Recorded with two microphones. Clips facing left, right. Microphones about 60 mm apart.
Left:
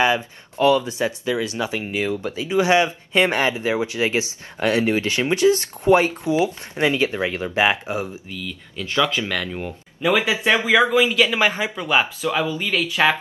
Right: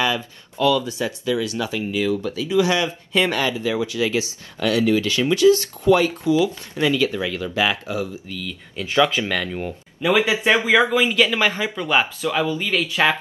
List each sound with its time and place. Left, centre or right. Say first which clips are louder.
0.0 s speech: left 3 dB; left
8.3 s speech: right 1 dB; centre
8.7 s speech: right 3 dB; centre
9.3 s speech: right 1 dB; centre
11.2 s speech: left 1 dB; centre